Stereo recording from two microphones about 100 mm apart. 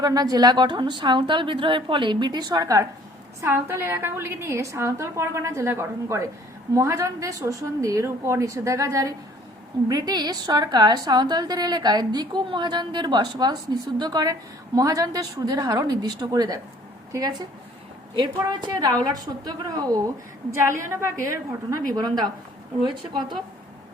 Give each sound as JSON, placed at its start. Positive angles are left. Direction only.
{"t": 0.0, "sound": "a woman's voice", "side_deg": -40}
{"t": 3.4, "sound": "a woman's voice", "side_deg": -25}
{"t": 9.9, "sound": "a woman's voice", "side_deg": -45}
{"t": 20.5, "sound": "a woman's voice", "side_deg": -25}
{"t": 21.7, "sound": "a woman's voice", "side_deg": -40}